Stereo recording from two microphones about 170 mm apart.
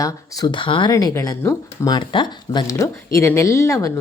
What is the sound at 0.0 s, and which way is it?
Speech, 25° left (ahead or behind).